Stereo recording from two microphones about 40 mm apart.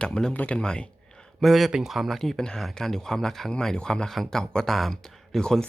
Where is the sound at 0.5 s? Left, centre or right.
Left.